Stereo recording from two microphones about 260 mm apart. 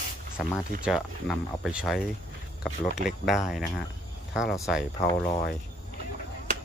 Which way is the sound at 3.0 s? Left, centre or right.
Centre.